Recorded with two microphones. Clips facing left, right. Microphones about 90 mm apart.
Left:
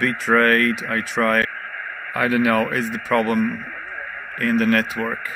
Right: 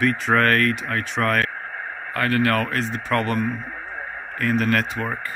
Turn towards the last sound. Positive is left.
turn(degrees=0)  # may be behind; listen again after turning